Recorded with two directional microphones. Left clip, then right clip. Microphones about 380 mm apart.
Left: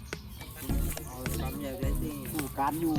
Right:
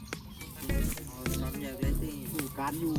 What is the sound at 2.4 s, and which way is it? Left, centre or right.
Speech, centre.